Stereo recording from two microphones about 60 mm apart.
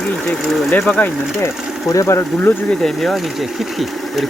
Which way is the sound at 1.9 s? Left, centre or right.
Left.